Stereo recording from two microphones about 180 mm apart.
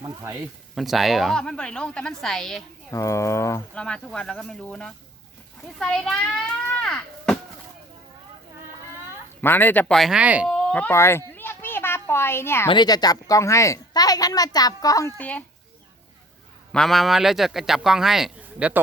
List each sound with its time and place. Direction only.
0.8 s speech: centre (ahead or behind)
2.9 s speech: 15° left (ahead or behind)
5.6 s chop: 5° left (ahead or behind)
9.4 s speech: 10° left (ahead or behind); by 10.5 s 5° right (ahead or behind)
10.5 s speech: 5° left (ahead or behind)
11.3 s a sound: 10° left (ahead or behind)
12.6 s a woman's voice: 25° left (ahead or behind)
15.2 s speech: 10° left (ahead or behind)
16.7 s speech: centre (ahead or behind)